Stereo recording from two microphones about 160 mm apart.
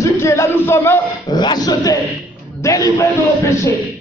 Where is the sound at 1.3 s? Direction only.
25° left (ahead or behind).